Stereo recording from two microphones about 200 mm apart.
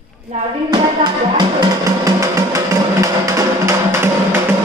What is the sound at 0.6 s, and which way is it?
Music, 20° right (ahead or behind).